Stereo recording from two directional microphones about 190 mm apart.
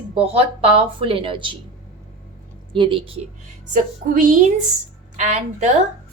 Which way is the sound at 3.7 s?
45° right (ahead or behind).